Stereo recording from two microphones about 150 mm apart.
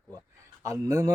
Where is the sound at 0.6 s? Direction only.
20° right (ahead or behind).